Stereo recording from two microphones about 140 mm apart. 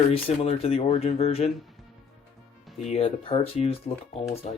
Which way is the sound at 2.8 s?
50° left (ahead or behind).